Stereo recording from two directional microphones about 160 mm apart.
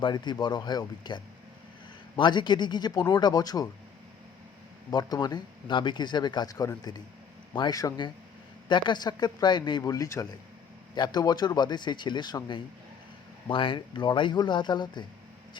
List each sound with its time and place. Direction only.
0.0 s speech: 30° left (ahead or behind)
4.9 s speech: 25° left (ahead or behind)